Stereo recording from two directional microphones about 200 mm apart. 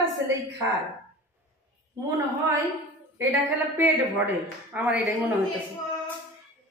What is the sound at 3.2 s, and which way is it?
A woman's voice, 10° right (ahead or behind).